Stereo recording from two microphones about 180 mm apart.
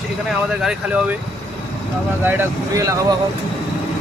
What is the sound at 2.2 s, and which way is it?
Speech, 15° right (ahead or behind).